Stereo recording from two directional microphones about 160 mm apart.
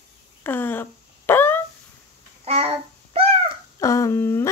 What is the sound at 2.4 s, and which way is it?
Child singing, 40° right (ahead or behind).